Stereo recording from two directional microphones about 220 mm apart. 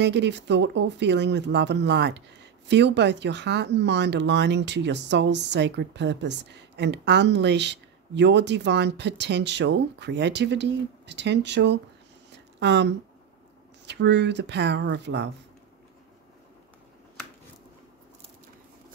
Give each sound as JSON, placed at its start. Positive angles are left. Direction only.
{"t": 0.0, "sound": "speech", "side_deg": -50}
{"t": 12.3, "sound": "a sound", "side_deg": -50}
{"t": 13.8, "sound": "speech", "side_deg": -50}